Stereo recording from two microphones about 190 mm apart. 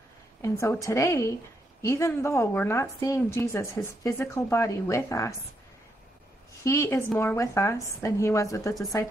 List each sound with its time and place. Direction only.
0.4 s a woman's voice: 15° left (ahead or behind)
6.6 s a woman's voice: 15° left (ahead or behind)